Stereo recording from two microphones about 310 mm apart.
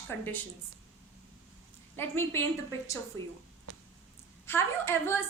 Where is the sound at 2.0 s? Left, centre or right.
Centre.